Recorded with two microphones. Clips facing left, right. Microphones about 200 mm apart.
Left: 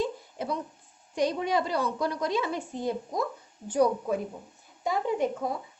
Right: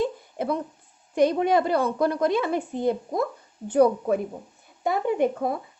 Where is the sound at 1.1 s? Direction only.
55° right (ahead or behind).